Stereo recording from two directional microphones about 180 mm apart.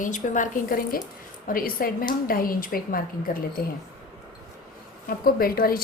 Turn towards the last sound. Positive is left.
turn(degrees=55)  # may be behind; listen again after turning